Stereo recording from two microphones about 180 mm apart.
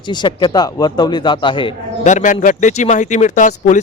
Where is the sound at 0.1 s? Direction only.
25° left (ahead or behind).